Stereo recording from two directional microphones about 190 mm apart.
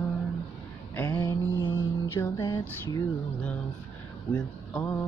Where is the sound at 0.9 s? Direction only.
15° left (ahead or behind).